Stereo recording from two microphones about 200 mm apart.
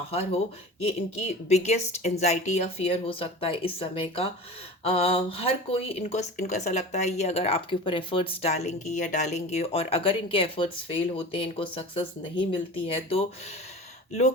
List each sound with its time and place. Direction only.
0.1 s speech: 30° left (ahead or behind)